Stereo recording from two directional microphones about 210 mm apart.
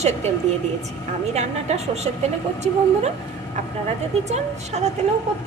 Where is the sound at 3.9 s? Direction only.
30° right (ahead or behind).